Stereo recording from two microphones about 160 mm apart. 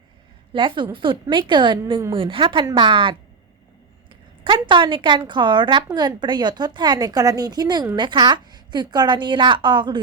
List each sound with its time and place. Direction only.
0.5 s a woman's voice: 30° right (ahead or behind)